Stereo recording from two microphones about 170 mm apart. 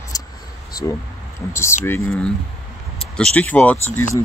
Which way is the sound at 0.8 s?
20° left (ahead or behind).